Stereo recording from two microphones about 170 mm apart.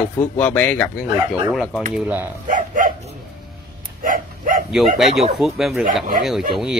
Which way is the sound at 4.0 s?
55° right (ahead or behind).